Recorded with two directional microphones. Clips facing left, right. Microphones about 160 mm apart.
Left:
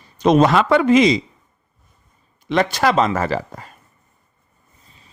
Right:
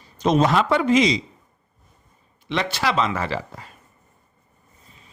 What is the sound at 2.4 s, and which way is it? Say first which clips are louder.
Speech: left 6 dB; 45° left (ahead or behind).